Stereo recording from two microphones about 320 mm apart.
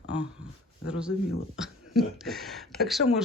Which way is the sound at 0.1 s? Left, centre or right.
Centre.